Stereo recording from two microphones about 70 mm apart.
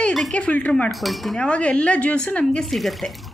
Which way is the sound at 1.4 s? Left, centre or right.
Centre.